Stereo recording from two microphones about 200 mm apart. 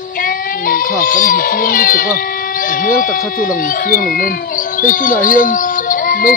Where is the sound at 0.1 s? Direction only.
45° left (ahead or behind).